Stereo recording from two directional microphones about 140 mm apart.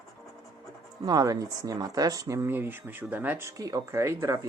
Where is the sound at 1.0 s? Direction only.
25° right (ahead or behind).